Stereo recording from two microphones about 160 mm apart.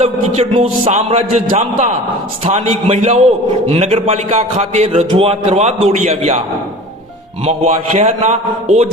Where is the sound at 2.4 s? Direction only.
40° right (ahead or behind).